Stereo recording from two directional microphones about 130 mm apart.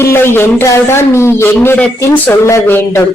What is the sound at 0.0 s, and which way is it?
A woman's voice, 20° left (ahead or behind).